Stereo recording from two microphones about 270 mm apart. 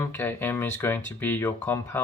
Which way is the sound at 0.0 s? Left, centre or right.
Centre.